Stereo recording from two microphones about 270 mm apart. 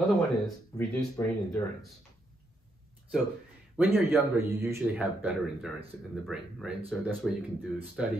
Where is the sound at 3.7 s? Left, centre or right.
Centre.